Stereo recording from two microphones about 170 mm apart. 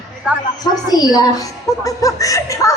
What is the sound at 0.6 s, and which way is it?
Speech, 25° left (ahead or behind).